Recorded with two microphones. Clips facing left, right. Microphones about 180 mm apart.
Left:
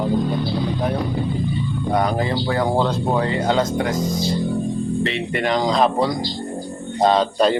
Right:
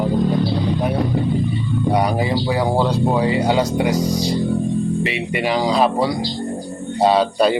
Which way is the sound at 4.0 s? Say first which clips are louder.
Right 3 dB; 40° right (ahead or behind).